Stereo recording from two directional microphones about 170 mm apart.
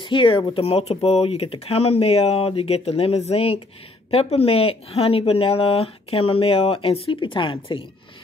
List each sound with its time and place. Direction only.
0.0 s speech: 30° left (ahead or behind)